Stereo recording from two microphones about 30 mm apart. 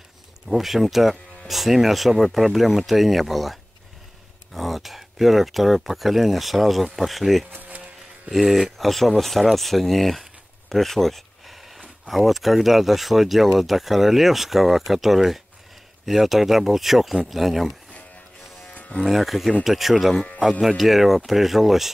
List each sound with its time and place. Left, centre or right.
0.5 s speech: centre
4.6 s speech: centre
8.6 s speech: centre
18.7 s electric shaver: left
19.0 s speech: centre